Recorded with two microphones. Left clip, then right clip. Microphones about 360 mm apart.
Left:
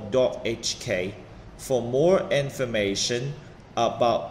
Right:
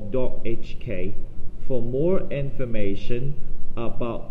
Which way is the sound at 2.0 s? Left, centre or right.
Centre.